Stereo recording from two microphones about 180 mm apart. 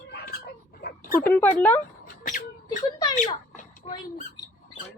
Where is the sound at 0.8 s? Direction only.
60° left (ahead or behind).